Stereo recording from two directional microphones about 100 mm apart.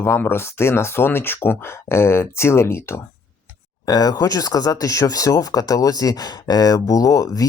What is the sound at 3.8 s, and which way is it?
Speech, 40° left (ahead or behind).